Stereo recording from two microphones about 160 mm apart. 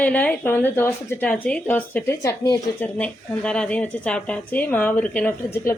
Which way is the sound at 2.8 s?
10° left (ahead or behind).